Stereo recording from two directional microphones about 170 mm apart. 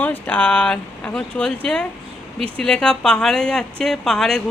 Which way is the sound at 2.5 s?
5° left (ahead or behind).